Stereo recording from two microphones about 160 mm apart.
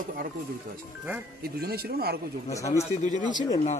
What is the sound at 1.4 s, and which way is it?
Speech, 75° right (ahead or behind).